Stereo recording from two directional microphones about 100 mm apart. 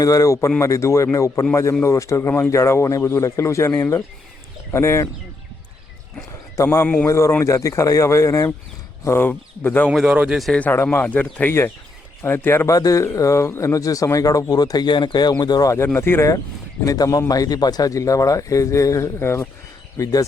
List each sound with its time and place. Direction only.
0.0 s a man's voice: 35° left (ahead or behind)
6.8 s speech: 15° left (ahead or behind)
7.1 s a man's voice: 30° left (ahead or behind)
9.9 s speech: 10° right (ahead or behind)
10.9 s speech: 15° left (ahead or behind)
12.7 s a man's voice: 35° left (ahead or behind)
16.0 s speech: 25° left (ahead or behind)
16.8 s a man's voice: 35° left (ahead or behind)